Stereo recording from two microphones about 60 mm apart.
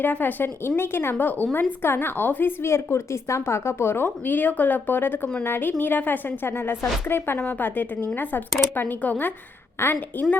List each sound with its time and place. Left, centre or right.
0.0 s speech: left
9.7 s speech: left